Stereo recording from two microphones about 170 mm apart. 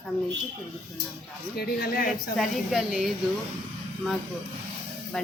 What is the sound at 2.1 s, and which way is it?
Speech, centre (ahead or behind).